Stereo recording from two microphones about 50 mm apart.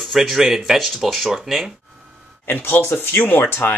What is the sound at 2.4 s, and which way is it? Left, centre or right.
Speech, left.